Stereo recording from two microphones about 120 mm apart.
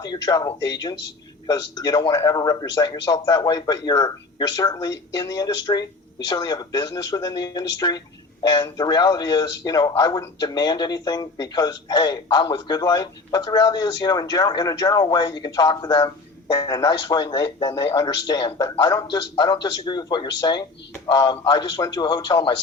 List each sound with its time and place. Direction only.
0.0 s a man's voice: 35° left (ahead or behind)